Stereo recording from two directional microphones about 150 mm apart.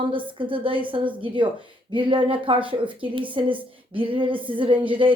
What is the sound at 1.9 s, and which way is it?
Speech, 35° right (ahead or behind).